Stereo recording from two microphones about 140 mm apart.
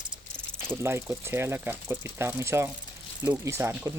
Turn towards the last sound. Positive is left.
turn(degrees=-15)  # may be behind; listen again after turning